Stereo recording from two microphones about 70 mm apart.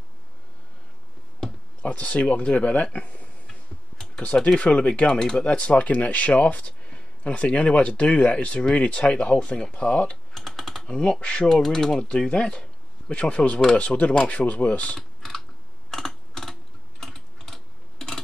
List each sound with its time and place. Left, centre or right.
1.8 s speech: centre
10.4 s typing: centre
11.0 s speech: centre
11.4 s speech: centre
12.0 s speech: centre
15.0 s typing: centre